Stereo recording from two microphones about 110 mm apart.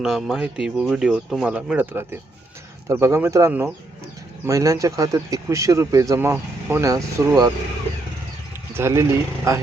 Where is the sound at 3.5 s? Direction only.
15° right (ahead or behind).